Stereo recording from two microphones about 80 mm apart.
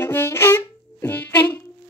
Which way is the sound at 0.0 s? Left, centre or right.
Left.